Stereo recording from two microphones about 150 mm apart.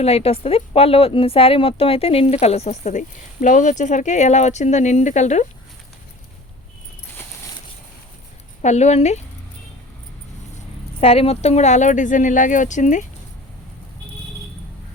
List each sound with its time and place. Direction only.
0.0 s speech: 40° left (ahead or behind)
8.6 s speech: 50° left (ahead or behind)
11.0 s speech: 40° left (ahead or behind)